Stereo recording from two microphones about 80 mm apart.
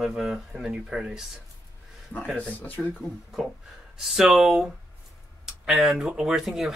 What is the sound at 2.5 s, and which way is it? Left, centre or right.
Speech, left.